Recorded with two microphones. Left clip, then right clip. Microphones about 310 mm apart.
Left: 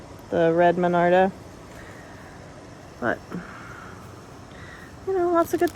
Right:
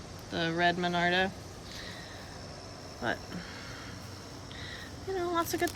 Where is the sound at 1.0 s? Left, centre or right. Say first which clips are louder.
Left 10 dB; centre.